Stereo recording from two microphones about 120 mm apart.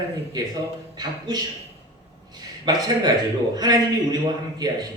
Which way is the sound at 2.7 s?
35° right (ahead or behind).